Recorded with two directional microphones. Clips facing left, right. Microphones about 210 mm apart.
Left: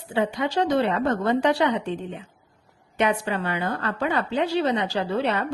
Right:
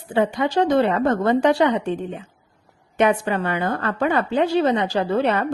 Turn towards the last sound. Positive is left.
turn(degrees=-50)  # may be behind; listen again after turning